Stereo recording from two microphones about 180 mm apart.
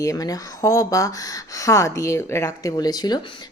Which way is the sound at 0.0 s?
20° left (ahead or behind).